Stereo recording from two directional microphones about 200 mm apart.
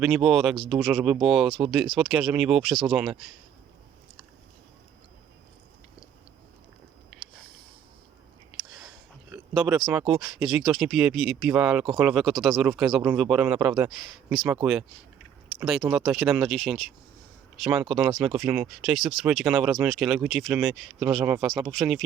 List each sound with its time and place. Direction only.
0.0 s speech: 5° right (ahead or behind)
9.3 s speech: 5° right (ahead or behind)